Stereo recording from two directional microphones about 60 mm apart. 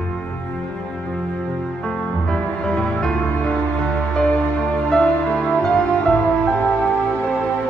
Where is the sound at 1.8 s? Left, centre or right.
Centre.